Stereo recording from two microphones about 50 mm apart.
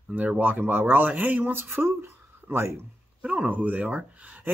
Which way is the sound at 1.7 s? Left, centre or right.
Right.